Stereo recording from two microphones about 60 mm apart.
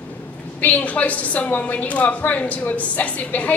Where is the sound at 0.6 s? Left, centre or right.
Left.